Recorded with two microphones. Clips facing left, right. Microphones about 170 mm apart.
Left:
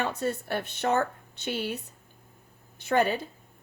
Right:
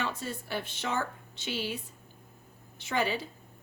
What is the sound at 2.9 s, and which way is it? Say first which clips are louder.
Speech: left 6 dB; 50° left (ahead or behind).